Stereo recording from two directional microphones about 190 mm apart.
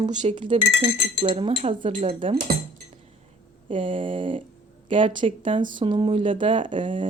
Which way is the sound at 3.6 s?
30° right (ahead or behind).